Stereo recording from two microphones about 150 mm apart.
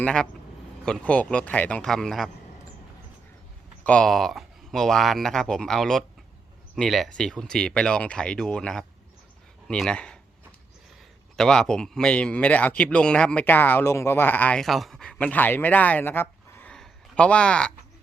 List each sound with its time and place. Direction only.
0.0 s a man's voice: 5° left (ahead or behind)
3.8 s speech: 5° left (ahead or behind)
11.3 s a man's voice: 5° left (ahead or behind)